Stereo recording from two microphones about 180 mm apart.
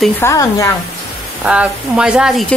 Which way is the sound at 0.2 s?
15° left (ahead or behind).